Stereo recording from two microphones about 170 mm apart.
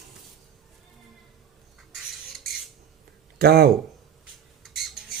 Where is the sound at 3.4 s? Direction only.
65° right (ahead or behind).